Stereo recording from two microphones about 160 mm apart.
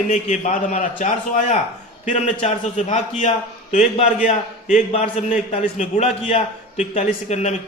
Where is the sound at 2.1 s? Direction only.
45° left (ahead or behind).